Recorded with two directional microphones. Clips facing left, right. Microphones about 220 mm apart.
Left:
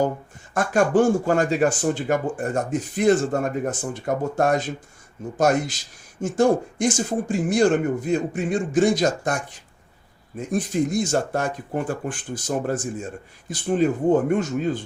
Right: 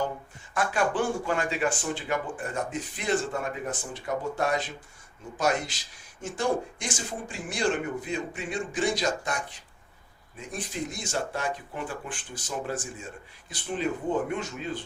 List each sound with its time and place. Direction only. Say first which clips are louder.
0.5 s speech: left 8 dB; 45° left (ahead or behind)